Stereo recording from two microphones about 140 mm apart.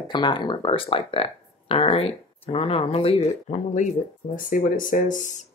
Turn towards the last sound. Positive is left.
turn(degrees=60)  # may be behind; listen again after turning